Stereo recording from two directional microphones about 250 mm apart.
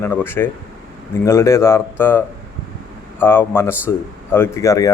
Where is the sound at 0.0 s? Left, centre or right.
Centre.